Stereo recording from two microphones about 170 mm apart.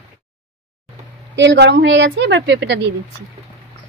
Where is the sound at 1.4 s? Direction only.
90° right.